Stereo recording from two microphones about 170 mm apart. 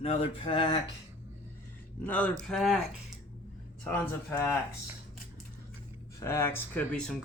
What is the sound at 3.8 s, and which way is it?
Speech, 15° left (ahead or behind).